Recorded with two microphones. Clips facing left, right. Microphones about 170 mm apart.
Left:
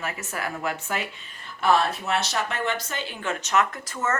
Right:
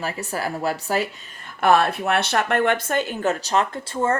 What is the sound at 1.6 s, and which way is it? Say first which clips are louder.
Speech: right 4 dB; 60° right (ahead or behind).